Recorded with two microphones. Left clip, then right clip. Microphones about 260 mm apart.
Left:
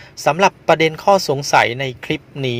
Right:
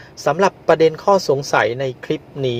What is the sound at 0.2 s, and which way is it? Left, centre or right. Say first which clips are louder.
Speech: left 2 dB; left.